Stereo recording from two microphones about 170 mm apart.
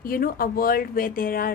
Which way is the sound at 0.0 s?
60° left (ahead or behind).